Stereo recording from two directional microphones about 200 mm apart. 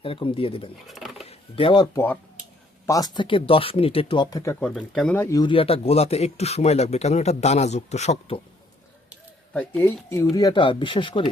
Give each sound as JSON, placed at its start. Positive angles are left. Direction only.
{"t": 0.0, "sound": "speech", "side_deg": 25}
{"t": 0.9, "sound": "a sound", "side_deg": 0}
{"t": 1.2, "sound": "a sound", "side_deg": 30}
{"t": 2.8, "sound": "speech", "side_deg": 20}
{"t": 4.6, "sound": "a man's voice", "side_deg": 5}
{"t": 9.5, "sound": "speech", "side_deg": 10}